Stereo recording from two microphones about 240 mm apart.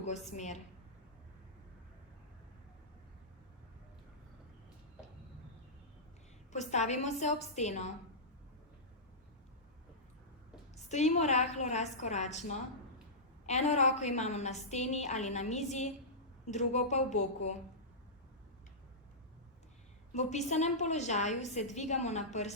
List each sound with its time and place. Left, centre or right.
0.0 s a woman's voice: left
6.5 s a woman's voice: left
10.8 s a woman's voice: left
20.1 s a woman's voice: left